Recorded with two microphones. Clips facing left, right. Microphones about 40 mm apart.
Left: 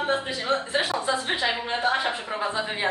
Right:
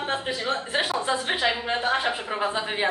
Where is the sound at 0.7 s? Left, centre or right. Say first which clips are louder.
Even; right.